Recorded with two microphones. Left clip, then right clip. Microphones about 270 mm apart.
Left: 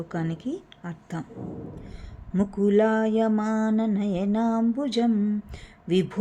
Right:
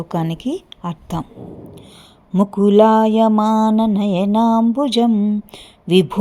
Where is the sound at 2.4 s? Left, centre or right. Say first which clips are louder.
Right 10 dB; right.